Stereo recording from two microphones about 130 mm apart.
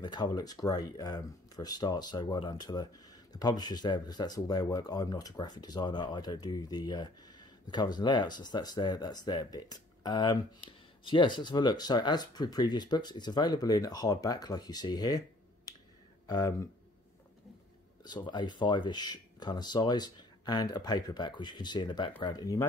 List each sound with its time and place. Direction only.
0.0 s speech: 35° left (ahead or behind)
18.0 s speech: 35° left (ahead or behind)